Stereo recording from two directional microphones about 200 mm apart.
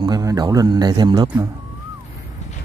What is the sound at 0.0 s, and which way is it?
A man's voice, 20° right (ahead or behind).